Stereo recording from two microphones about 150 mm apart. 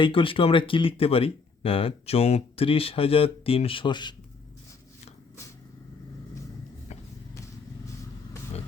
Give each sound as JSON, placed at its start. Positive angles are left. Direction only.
{"t": 0.0, "sound": "speech", "side_deg": 35}